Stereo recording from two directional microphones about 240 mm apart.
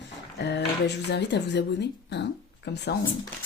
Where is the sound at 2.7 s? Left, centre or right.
Left.